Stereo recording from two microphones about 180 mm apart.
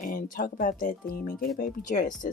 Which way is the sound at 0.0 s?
50° left (ahead or behind).